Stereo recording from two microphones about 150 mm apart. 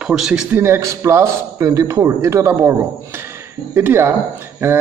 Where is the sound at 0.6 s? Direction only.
15° right (ahead or behind).